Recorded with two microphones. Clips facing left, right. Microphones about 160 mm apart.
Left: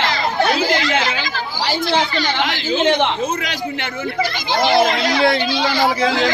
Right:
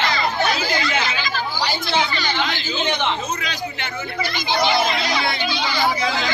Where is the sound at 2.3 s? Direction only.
60° left (ahead or behind).